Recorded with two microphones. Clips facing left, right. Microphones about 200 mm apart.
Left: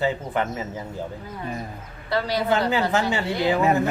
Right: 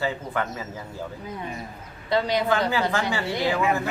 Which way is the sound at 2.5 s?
20° left (ahead or behind).